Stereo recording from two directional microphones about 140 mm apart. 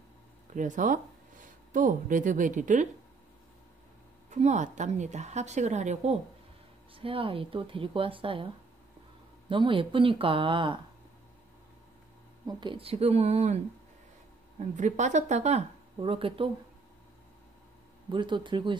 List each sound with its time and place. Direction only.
0.5 s speech: 65° right (ahead or behind)
4.3 s a woman's voice: 55° right (ahead or behind)
7.0 s a woman's voice: 40° right (ahead or behind)
9.5 s a woman's voice: 35° right (ahead or behind)
12.4 s speech: 35° right (ahead or behind); by 13.6 s 50° right (ahead or behind)
14.6 s a woman's voice: 60° right (ahead or behind)
16.0 s a woman's voice: 40° right (ahead or behind)
18.1 s a woman's voice: 35° right (ahead or behind)